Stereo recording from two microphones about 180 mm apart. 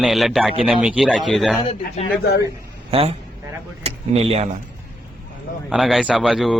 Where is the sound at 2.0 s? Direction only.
35° left (ahead or behind).